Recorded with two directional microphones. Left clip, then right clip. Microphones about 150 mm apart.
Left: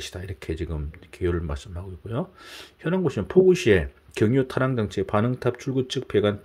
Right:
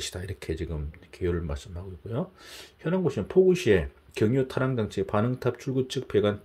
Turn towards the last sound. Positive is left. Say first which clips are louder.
# left 2 dB
turn(degrees=25)  # may be behind; listen again after turning